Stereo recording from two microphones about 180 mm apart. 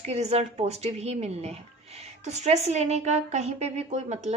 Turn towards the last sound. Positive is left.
turn(degrees=-40)  # may be behind; listen again after turning